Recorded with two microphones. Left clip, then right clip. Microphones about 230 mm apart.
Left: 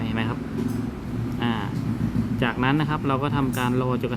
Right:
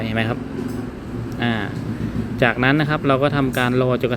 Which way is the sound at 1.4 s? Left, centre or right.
Centre.